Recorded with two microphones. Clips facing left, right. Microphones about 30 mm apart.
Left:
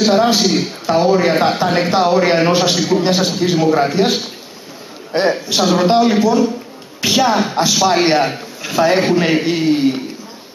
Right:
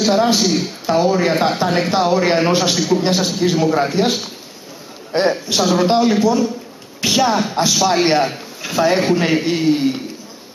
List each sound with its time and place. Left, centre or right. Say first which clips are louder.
0.0 s a man's voice: left 2 dB; centre
5.6 s a man's voice: left 2 dB; centre